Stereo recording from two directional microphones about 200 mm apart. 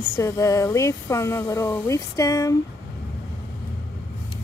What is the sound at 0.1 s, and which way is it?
Speech, 15° left (ahead or behind).